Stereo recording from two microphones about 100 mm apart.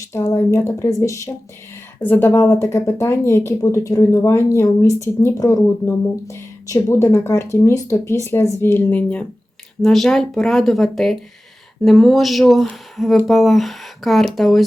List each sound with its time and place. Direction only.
0.1 s speech: 30° left (ahead or behind)
2.0 s speech: 20° left (ahead or behind); by 14.6 s centre (ahead or behind)